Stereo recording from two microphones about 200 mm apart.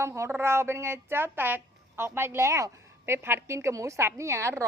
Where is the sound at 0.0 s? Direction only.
15° right (ahead or behind).